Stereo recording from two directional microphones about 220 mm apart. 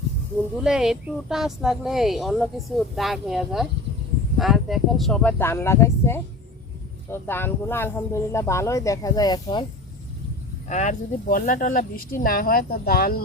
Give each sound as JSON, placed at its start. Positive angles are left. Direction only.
{"t": 0.6, "sound": "speech", "side_deg": -5}
{"t": 10.7, "sound": "speech", "side_deg": 35}